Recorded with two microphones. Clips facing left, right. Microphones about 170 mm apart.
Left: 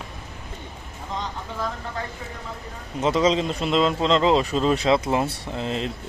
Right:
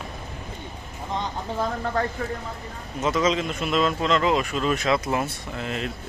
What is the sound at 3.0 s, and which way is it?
Speech, 30° left (ahead or behind).